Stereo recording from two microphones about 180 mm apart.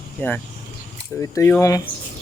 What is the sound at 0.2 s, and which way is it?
Speech, 10° left (ahead or behind).